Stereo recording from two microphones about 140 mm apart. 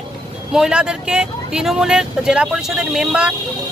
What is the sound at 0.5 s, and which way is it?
Speech, 5° right (ahead or behind).